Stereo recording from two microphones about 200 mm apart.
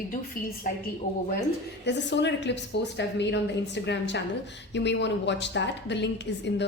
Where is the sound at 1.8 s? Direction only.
60° left (ahead or behind).